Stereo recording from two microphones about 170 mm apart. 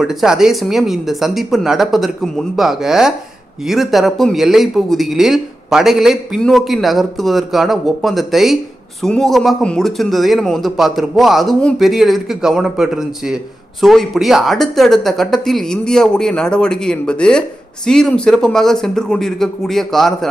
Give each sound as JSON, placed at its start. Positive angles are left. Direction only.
{"t": 0.0, "sound": "speech", "side_deg": -5}